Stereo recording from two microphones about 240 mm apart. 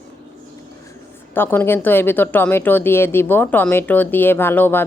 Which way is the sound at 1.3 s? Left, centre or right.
Centre.